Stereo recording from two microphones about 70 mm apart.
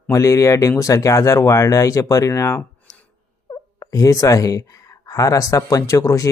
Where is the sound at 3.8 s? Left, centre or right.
Left.